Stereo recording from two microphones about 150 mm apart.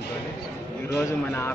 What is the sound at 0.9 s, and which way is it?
Speech, 15° left (ahead or behind).